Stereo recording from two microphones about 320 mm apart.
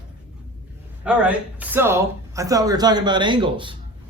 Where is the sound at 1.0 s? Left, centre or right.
Centre.